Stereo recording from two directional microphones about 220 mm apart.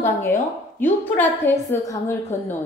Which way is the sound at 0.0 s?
10° left (ahead or behind).